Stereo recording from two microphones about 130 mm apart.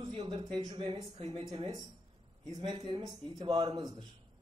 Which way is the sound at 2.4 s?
30° right (ahead or behind).